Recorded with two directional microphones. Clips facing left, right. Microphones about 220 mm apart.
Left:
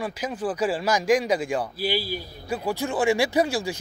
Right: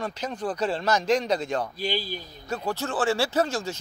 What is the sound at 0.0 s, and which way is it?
A man's voice, 10° left (ahead or behind).